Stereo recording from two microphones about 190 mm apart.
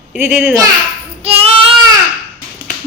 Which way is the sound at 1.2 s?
30° right (ahead or behind).